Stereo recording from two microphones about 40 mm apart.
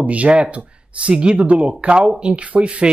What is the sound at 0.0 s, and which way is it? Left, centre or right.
Speech, right.